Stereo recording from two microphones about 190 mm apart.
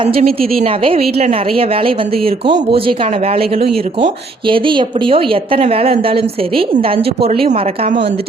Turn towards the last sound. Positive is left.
turn(degrees=-30)  # may be behind; listen again after turning